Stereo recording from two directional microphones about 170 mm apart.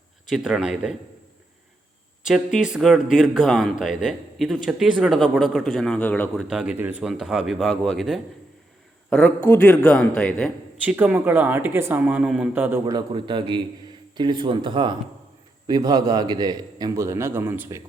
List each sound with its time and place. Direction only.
0.3 s speech: centre (ahead or behind)
2.2 s speech: centre (ahead or behind)
6.5 s speech: 5° right (ahead or behind)
10.8 s speech: 10° right (ahead or behind)
12.8 s a man's voice: 25° right (ahead or behind)